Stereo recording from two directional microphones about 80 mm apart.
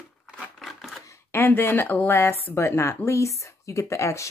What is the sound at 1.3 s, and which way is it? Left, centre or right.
A woman's voice, left.